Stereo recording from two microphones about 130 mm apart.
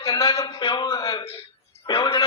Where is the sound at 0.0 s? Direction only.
30° left (ahead or behind).